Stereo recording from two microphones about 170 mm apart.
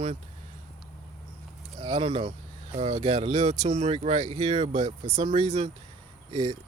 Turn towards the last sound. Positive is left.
turn(degrees=-35)  # may be behind; listen again after turning